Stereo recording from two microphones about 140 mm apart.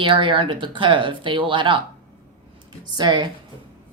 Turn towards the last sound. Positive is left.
turn(degrees=-30)  # may be behind; listen again after turning